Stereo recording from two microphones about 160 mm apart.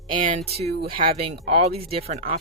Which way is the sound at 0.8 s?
35° right (ahead or behind).